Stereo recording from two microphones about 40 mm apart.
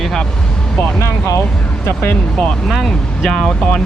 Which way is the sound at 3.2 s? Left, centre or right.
Centre.